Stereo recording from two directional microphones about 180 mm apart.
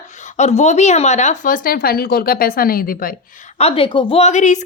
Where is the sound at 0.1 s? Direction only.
40° left (ahead or behind).